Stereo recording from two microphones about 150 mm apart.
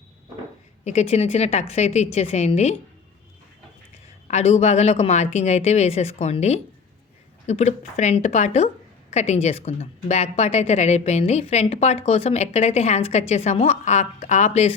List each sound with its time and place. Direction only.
0.9 s a woman's voice: 50° left (ahead or behind)
4.3 s a woman's voice: 50° left (ahead or behind)